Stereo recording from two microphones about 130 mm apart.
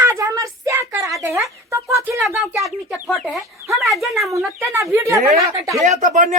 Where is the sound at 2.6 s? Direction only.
Centre (ahead or behind).